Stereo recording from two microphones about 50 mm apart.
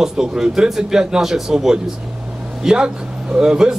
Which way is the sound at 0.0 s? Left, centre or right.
Centre.